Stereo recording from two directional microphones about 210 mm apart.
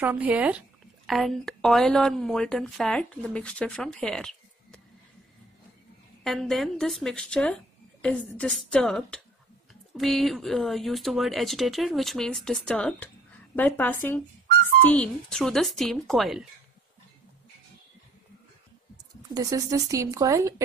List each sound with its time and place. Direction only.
0.0 s speech: 5° right (ahead or behind)
6.2 s speech: centre (ahead or behind)
19.3 s a woman's voice: 15° right (ahead or behind)